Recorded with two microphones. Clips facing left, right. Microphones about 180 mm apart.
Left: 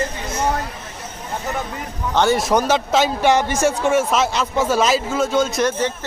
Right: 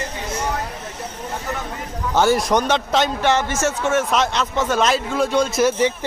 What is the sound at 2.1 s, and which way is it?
A man's voice, centre (ahead or behind).